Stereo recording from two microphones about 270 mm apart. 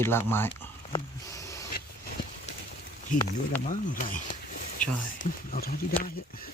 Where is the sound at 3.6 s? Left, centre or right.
Left.